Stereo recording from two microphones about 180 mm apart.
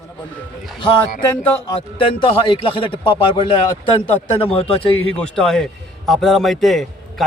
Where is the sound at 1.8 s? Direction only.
30° left (ahead or behind).